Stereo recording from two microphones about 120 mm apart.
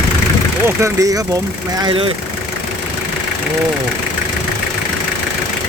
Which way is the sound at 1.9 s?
50° right (ahead or behind).